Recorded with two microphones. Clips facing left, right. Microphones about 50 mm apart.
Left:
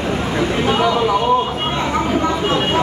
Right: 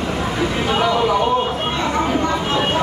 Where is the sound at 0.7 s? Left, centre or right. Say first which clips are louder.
Even; centre.